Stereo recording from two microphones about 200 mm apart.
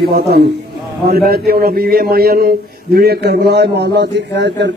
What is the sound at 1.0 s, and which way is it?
A man's voice, 50° right (ahead or behind).